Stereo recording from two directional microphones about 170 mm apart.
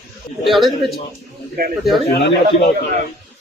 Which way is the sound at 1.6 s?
55° right (ahead or behind).